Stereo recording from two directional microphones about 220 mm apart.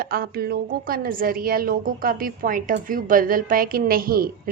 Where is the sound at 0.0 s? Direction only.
40° right (ahead or behind).